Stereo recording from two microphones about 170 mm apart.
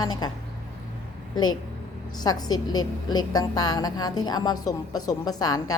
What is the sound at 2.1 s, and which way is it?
A woman's voice, 25° left (ahead or behind).